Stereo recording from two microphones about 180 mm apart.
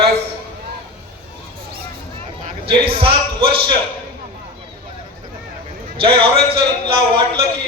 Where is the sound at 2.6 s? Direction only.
30° right (ahead or behind).